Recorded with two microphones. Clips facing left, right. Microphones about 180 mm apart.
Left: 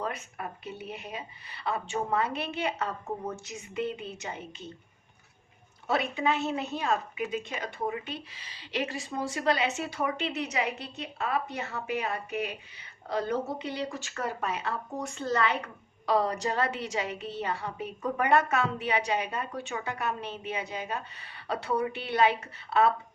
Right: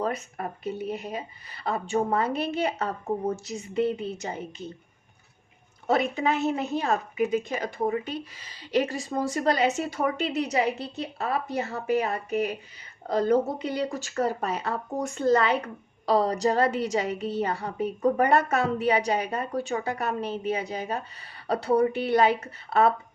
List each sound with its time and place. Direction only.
0.0 s speech: 40° right (ahead or behind)
5.9 s speech: 40° right (ahead or behind)